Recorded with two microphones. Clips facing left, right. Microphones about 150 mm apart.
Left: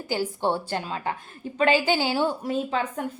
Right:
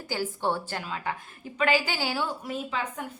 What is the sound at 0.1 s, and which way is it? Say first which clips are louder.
A woman's voice: left 3 dB; 20° left (ahead or behind).